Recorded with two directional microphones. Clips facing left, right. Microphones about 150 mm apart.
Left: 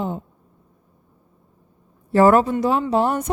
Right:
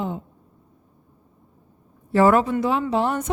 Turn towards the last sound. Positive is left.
turn(degrees=40)  # may be behind; listen again after turning